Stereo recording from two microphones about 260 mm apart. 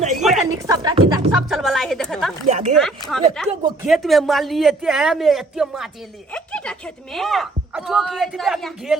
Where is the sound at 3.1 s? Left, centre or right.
Centre.